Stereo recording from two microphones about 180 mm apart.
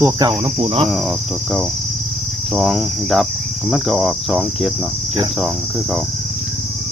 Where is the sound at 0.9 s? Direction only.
Centre (ahead or behind).